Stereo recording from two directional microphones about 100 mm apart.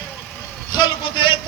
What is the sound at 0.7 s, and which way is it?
Speech, 50° left (ahead or behind).